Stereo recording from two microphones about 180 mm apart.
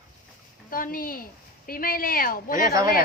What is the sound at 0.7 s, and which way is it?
Speech, 50° left (ahead or behind).